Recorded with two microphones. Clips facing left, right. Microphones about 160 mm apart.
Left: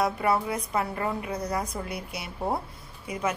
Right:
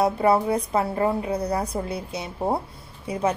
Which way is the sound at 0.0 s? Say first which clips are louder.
Right 5 dB; 30° right (ahead or behind).